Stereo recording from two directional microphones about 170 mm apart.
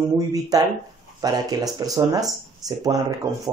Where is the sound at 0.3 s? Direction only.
20° right (ahead or behind).